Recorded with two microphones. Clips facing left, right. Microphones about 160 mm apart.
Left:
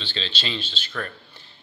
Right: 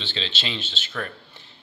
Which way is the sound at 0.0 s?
20° right (ahead or behind).